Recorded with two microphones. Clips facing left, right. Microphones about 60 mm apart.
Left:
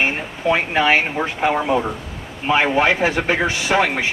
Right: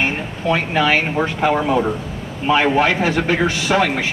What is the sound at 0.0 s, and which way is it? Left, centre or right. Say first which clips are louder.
A man's voice: even; centre.